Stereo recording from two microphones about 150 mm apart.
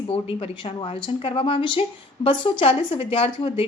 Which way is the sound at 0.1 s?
40° left (ahead or behind).